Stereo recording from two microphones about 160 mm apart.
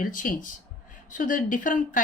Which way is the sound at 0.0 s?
55° left (ahead or behind).